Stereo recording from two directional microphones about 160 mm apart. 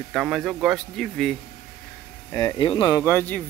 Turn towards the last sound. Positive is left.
turn(degrees=10)  # may be behind; listen again after turning